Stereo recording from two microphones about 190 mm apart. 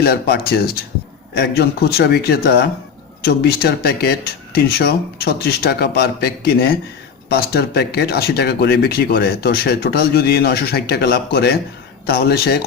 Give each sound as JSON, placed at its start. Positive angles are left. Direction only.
{"t": 0.0, "sound": "speech", "side_deg": 55}